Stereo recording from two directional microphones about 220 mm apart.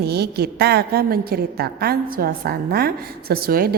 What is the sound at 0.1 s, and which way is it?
A woman's voice, 45° right (ahead or behind).